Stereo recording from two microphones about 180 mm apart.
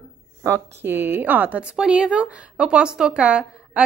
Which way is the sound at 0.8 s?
10° right (ahead or behind).